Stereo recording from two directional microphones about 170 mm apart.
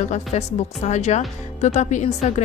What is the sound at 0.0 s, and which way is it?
A woman's voice, 40° left (ahead or behind).